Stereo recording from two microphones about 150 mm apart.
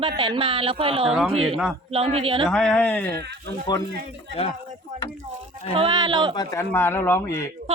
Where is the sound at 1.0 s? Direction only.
Centre (ahead or behind).